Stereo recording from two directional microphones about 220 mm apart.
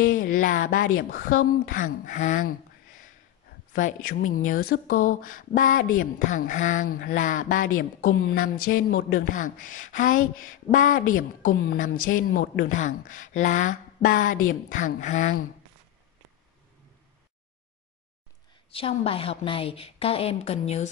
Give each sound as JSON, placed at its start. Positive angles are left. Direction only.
{"t": 0.1, "sound": "speech", "side_deg": 40}
{"t": 3.7, "sound": "speech", "side_deg": 40}
{"t": 18.7, "sound": "a woman's voice", "side_deg": 25}